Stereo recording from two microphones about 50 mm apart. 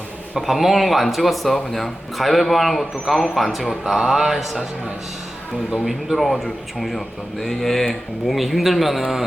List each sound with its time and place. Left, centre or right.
0.3 s speech: centre
5.7 s speech: centre